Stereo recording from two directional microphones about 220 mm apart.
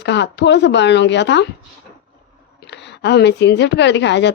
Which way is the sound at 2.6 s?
50° left (ahead or behind).